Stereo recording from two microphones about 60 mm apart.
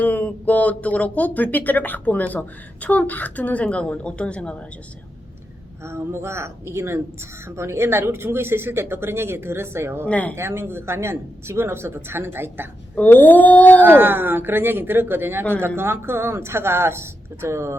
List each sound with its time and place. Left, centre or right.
0.0 s speech: left
5.8 s speech: right
10.1 s speech: left
10.3 s speech: right
13.0 s speech: left
13.8 s speech: right